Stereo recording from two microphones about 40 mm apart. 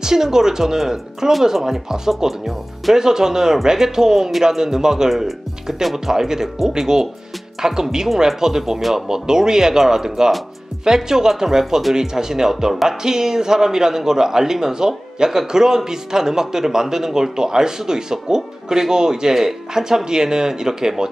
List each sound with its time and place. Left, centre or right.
0.0 s a man's voice: centre